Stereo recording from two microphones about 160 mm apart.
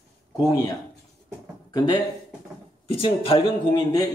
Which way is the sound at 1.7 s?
25° left (ahead or behind).